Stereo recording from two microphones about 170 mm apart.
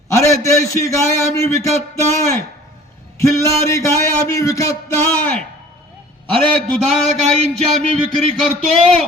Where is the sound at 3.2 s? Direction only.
15° left (ahead or behind).